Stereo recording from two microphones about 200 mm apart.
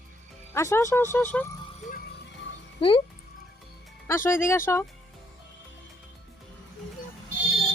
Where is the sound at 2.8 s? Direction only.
25° left (ahead or behind).